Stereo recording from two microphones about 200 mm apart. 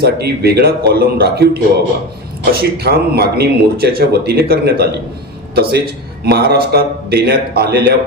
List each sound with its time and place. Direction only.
0.0 s a man's voice: 55° right (ahead or behind)